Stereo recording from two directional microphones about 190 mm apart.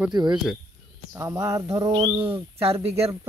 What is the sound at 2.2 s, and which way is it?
Speech, 30° right (ahead or behind).